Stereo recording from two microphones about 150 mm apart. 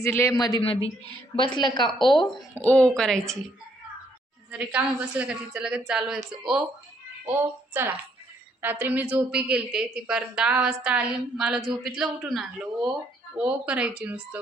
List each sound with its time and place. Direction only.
0.0 s a man's voice: 20° left (ahead or behind)
0.6 s speech: 40° left (ahead or behind)
2.6 s speech: 5° left (ahead or behind)
4.5 s a woman's voice: 10° right (ahead or behind)